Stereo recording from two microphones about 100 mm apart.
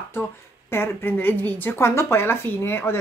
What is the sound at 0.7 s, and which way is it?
A woman's voice, 20° left (ahead or behind).